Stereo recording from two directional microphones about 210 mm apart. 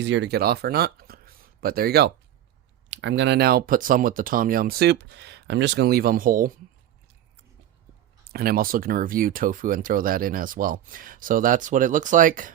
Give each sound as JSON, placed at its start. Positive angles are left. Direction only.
{"t": 0.0, "sound": "speech", "side_deg": -55}
{"t": 2.9, "sound": "speech", "side_deg": -60}
{"t": 8.3, "sound": "speech", "side_deg": -45}